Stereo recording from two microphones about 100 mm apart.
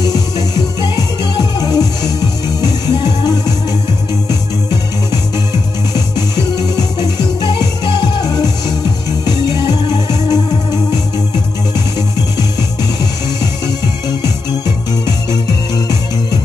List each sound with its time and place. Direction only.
0.0 s music: 40° left (ahead or behind)
5.9 s music: 40° left (ahead or behind)
15.0 s music: 40° left (ahead or behind)